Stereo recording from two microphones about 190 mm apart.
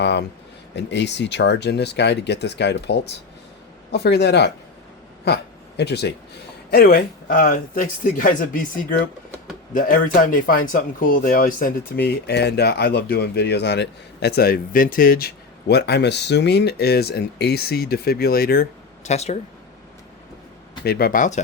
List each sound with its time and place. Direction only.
0.0 s speech: 65° left (ahead or behind)
15.7 s speech: 60° left (ahead or behind)
19.0 s speech: 35° left (ahead or behind)
20.8 s speech: 55° left (ahead or behind)